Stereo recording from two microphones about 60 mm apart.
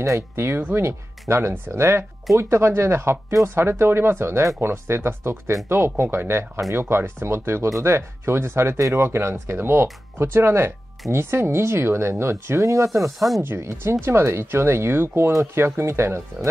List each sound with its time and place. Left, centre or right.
0.0 s speech: right
0.5 s speech: right
1.3 s speech: right
13.4 s speech: right